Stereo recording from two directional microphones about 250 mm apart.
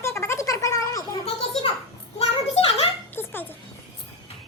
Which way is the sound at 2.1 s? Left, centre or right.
Left.